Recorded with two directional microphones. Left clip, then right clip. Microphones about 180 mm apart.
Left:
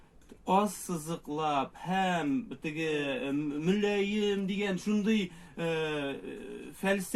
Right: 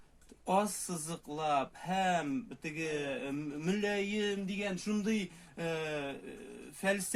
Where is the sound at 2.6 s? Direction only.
55° right (ahead or behind).